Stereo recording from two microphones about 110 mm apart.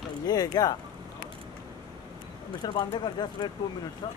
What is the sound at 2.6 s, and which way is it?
Speech, 40° left (ahead or behind).